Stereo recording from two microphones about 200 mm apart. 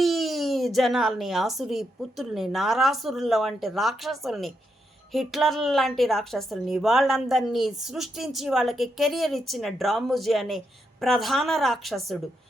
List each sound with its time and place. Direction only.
0.0 s a woman's voice: centre (ahead or behind)